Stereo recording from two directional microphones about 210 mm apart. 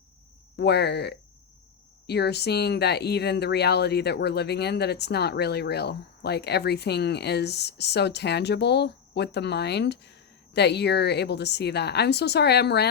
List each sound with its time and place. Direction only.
0.5 s speech: 50° left (ahead or behind)